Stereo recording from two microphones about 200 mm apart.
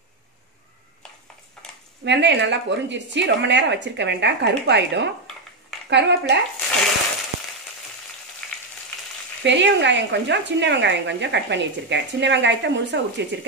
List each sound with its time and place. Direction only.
2.0 s speech: 60° right (ahead or behind)
8.4 s frying: centre (ahead or behind)
9.4 s speech: 60° right (ahead or behind)